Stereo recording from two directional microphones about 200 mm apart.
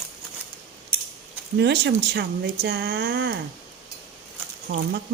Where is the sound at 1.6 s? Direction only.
60° right (ahead or behind).